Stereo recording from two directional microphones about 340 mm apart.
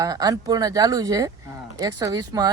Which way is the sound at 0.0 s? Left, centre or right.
Centre.